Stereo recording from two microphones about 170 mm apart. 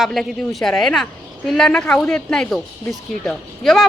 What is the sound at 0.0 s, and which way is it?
A woman's voice, centre (ahead or behind).